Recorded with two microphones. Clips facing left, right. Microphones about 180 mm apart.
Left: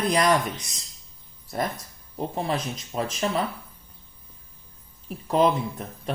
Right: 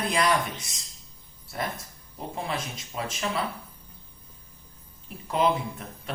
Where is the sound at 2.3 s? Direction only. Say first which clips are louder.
Left 4 dB; 35° left (ahead or behind).